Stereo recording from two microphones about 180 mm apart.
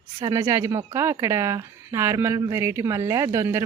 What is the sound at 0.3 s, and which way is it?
Speech, 15° right (ahead or behind).